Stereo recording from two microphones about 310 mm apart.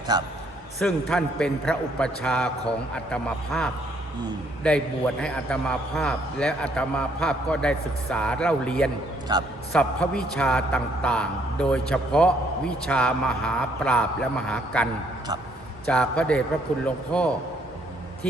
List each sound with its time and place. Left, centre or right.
0.1 s a man's voice: centre
0.8 s a man's voice: centre
9.3 s a man's voice: centre
9.7 s a man's voice: centre
15.9 s a man's voice: centre